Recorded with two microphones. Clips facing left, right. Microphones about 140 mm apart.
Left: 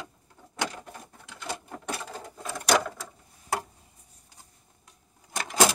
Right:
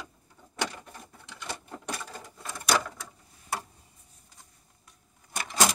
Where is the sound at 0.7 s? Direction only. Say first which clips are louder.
Left 3 dB; 10° left (ahead or behind).